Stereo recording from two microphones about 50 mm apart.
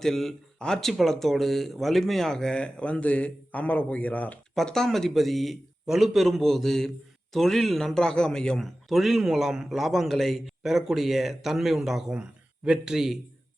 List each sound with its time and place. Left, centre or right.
0.0 s speech: centre; by 4.4 s left
4.5 s speech: centre
8.5 s a man's voice: centre
12.1 s speech: right